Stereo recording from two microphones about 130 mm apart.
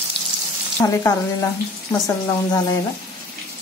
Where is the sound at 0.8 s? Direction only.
25° left (ahead or behind).